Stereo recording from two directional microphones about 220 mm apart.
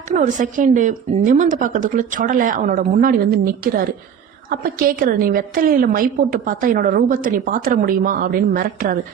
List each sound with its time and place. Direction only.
0.1 s a woman's voice: 35° right (ahead or behind)